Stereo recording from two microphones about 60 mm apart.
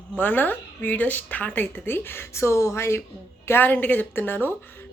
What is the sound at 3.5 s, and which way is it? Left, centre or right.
A woman's voice, left.